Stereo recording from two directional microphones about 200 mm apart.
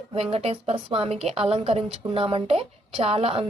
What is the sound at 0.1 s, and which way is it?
A woman's voice, 30° right (ahead or behind).